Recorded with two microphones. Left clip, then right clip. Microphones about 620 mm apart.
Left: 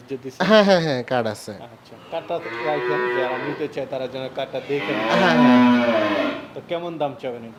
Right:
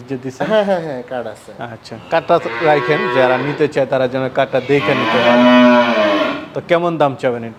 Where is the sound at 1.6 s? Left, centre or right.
Right.